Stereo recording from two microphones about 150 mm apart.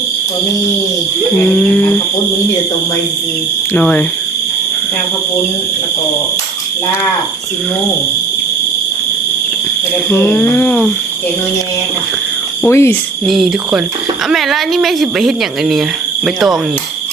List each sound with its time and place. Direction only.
3.8 s speech: 10° left (ahead or behind)
10.1 s speech: 10° left (ahead or behind)
12.6 s speech: 15° left (ahead or behind)
13.2 s a woman's voice: centre (ahead or behind)